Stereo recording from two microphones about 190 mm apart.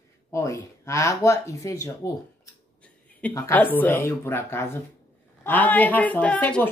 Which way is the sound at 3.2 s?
10° left (ahead or behind).